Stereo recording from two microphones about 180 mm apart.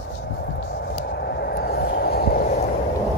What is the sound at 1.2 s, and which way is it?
Vehicle, 65° left (ahead or behind).